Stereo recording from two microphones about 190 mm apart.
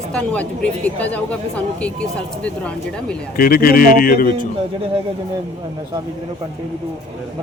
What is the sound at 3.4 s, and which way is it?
A man's voice, 50° left (ahead or behind).